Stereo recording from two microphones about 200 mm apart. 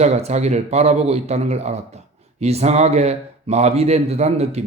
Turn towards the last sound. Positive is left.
turn(degrees=-30)  # may be behind; listen again after turning